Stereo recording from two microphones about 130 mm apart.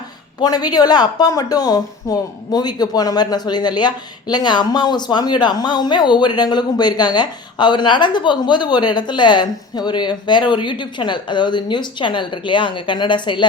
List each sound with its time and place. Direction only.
0.3 s speech: 30° left (ahead or behind)